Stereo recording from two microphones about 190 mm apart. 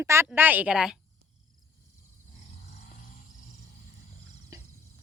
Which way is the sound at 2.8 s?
45° left (ahead or behind).